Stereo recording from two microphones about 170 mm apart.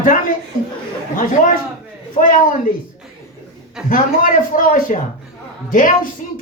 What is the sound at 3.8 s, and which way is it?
Speech, centre (ahead or behind).